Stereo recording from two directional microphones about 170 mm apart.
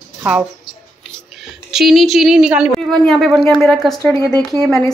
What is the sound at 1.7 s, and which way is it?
A woman's voice, centre (ahead or behind).